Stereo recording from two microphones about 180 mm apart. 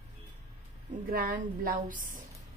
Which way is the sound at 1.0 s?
55° right (ahead or behind).